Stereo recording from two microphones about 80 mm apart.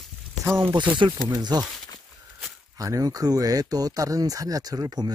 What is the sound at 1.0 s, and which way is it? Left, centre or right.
Speech, right.